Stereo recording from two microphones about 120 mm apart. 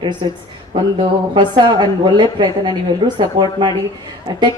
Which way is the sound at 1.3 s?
40° right (ahead or behind).